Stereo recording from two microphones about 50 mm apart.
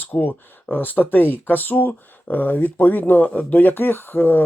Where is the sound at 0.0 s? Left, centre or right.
Left.